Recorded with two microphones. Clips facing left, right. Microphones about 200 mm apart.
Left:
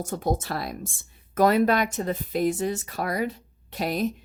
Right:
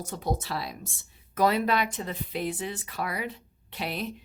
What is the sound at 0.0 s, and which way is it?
A woman's voice, 50° left (ahead or behind).